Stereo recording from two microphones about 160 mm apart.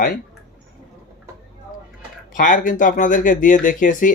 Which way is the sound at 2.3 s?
55° left (ahead or behind).